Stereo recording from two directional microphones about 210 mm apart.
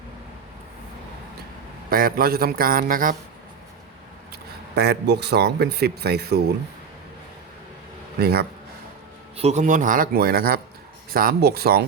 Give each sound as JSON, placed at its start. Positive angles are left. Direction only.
{"t": 1.9, "sound": "speech", "side_deg": -45}
{"t": 4.7, "sound": "speech", "side_deg": -50}
{"t": 8.2, "sound": "speech", "side_deg": -50}
{"t": 9.4, "sound": "speech", "side_deg": -35}